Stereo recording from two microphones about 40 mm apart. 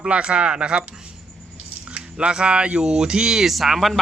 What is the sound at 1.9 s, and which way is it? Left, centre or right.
Speech, right.